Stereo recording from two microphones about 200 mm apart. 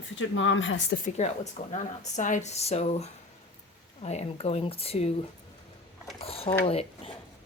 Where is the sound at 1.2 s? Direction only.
35° left (ahead or behind).